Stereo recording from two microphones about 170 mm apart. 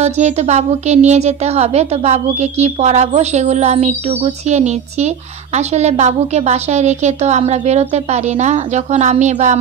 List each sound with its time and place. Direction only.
0.0 s a woman's voice: 40° right (ahead or behind)